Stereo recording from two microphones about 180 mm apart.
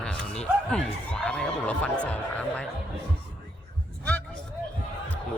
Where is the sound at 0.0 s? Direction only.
5° left (ahead or behind).